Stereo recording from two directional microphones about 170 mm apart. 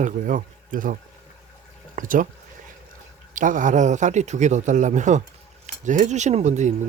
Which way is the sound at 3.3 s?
50° right (ahead or behind).